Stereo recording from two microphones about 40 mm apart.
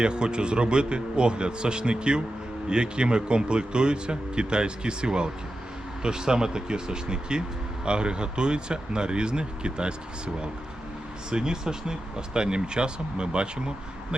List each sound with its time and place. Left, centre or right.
0.0 s speech: right
11.3 s speech: centre